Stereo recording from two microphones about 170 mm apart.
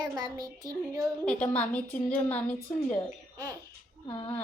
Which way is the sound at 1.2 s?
5° left (ahead or behind).